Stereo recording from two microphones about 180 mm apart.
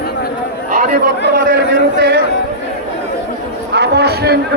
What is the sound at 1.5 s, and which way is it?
Speech, 65° right (ahead or behind).